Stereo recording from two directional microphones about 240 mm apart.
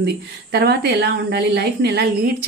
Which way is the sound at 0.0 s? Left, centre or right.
Right.